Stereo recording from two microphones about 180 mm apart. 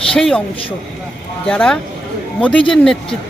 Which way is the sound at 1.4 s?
5° left (ahead or behind).